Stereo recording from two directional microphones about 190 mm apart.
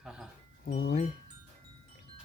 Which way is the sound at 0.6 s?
50° left (ahead or behind).